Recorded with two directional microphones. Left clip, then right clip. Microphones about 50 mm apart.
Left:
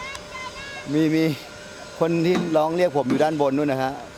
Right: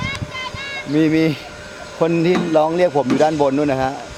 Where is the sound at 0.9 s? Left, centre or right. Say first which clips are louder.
Right 5 dB; centre.